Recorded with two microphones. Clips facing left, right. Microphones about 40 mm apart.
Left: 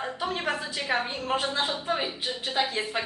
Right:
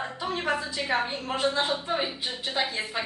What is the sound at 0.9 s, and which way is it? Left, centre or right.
Speech, centre.